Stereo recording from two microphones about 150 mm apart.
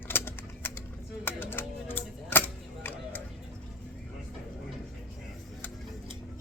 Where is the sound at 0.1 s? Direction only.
15° left (ahead or behind).